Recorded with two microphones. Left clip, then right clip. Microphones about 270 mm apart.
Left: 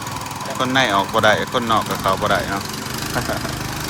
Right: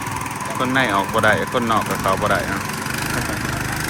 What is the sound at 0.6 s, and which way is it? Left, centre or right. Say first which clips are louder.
Speech: left 2 dB; centre.